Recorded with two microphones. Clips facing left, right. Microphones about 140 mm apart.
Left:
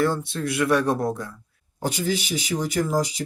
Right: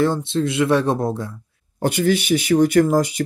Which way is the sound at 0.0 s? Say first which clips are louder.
Right 5 dB; 25° right (ahead or behind).